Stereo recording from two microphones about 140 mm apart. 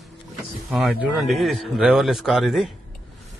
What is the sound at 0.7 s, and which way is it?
Speech, 5° right (ahead or behind).